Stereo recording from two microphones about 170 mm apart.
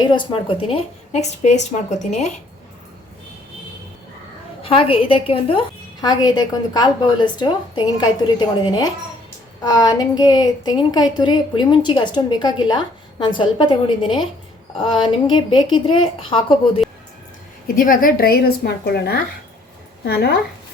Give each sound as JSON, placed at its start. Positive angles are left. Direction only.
{"t": 0.0, "sound": "speech", "side_deg": 25}
{"t": 4.6, "sound": "a woman's voice", "side_deg": 30}
{"t": 17.7, "sound": "a woman's voice", "side_deg": 55}